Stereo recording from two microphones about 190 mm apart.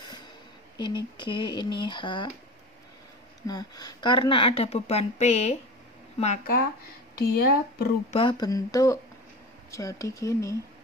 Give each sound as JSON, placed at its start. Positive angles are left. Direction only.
{"t": 0.7, "sound": "speech", "side_deg": 25}
{"t": 3.4, "sound": "speech", "side_deg": 20}
{"t": 7.2, "sound": "speech", "side_deg": 55}
{"t": 8.1, "sound": "speech", "side_deg": 25}